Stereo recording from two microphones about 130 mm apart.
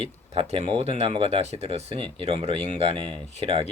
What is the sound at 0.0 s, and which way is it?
Speech, 50° right (ahead or behind).